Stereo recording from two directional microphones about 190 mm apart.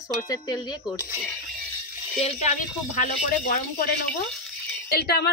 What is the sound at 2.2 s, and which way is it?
Speech, 35° left (ahead or behind).